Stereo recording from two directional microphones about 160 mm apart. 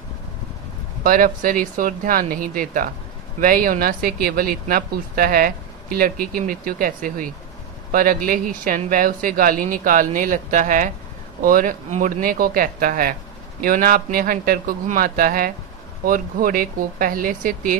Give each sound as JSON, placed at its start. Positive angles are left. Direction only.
{"t": 1.0, "sound": "speech", "side_deg": -60}